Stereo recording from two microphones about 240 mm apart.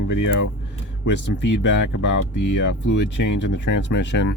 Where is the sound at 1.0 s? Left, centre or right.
Left.